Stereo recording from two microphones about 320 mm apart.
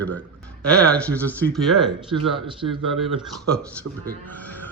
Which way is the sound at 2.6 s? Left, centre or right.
Right.